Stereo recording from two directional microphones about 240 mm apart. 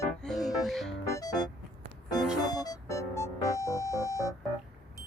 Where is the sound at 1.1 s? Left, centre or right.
Centre.